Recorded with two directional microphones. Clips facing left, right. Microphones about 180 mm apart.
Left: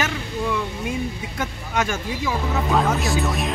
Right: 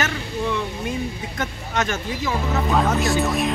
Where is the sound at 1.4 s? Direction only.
10° left (ahead or behind).